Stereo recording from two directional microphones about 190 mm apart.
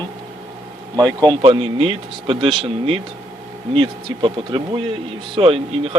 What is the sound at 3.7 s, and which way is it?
Speech, 25° right (ahead or behind).